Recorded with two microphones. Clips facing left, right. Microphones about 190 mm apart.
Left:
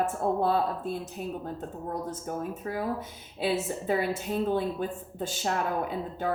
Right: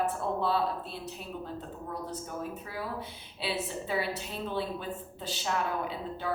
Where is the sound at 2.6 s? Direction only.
45° left (ahead or behind).